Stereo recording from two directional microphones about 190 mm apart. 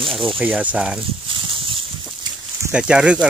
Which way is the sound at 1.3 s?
30° right (ahead or behind).